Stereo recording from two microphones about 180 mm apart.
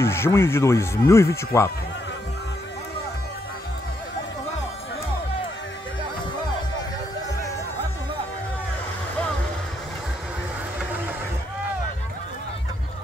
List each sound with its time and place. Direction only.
0.0 s speech: 15° left (ahead or behind)